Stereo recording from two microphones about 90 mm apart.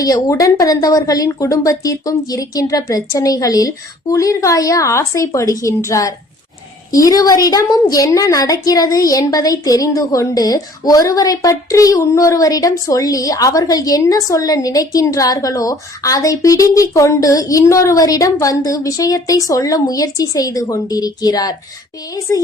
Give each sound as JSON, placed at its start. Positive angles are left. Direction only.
{"t": 0.0, "sound": "a woman's voice", "side_deg": 40}
{"t": 22.3, "sound": "a woman's voice", "side_deg": 35}